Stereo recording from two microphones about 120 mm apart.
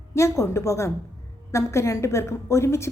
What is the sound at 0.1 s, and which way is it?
A woman's voice, 25° left (ahead or behind).